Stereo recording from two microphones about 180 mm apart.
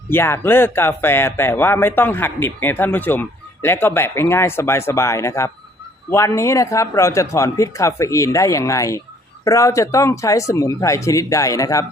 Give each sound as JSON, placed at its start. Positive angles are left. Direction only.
{"t": 0.1, "sound": "speech", "side_deg": 15}